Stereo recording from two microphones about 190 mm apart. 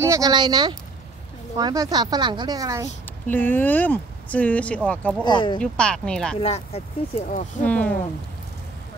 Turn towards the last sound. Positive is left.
turn(degrees=10)  # may be behind; listen again after turning